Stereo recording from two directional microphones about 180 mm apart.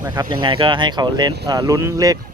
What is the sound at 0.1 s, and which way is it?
Speech, 25° right (ahead or behind).